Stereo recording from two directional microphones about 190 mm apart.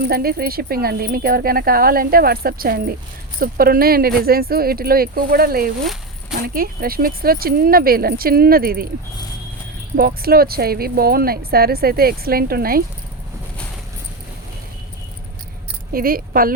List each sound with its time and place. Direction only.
0.1 s speech: 55° right (ahead or behind)
9.9 s speech: 50° right (ahead or behind)
15.9 s speech: 50° right (ahead or behind)